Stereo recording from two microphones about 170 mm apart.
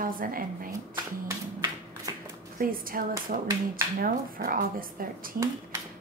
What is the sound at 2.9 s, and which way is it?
Speech, 55° right (ahead or behind).